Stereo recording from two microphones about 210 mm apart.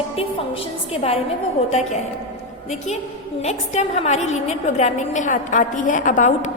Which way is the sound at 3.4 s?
30° left (ahead or behind).